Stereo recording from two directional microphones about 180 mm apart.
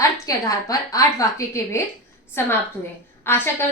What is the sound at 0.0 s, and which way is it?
A woman's voice, 20° left (ahead or behind).